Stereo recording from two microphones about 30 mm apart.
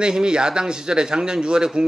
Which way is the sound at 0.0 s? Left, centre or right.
Right.